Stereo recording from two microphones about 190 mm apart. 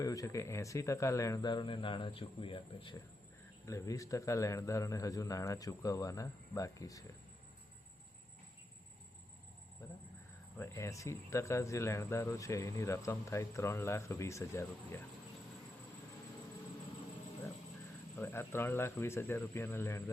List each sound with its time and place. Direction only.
0.0 s speech: 15° left (ahead or behind)
9.8 s speech: 15° left (ahead or behind)
18.2 s speech: 15° left (ahead or behind)